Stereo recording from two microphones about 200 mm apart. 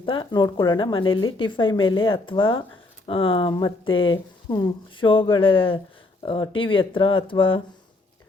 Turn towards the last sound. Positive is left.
turn(degrees=25)  # may be behind; listen again after turning